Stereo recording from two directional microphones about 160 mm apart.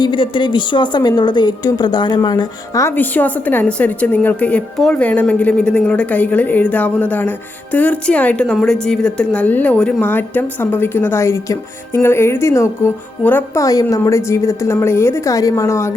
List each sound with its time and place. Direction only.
0.0 s a woman's voice: 30° left (ahead or behind)